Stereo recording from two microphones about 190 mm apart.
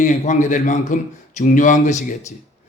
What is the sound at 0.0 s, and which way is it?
Speech, 40° left (ahead or behind).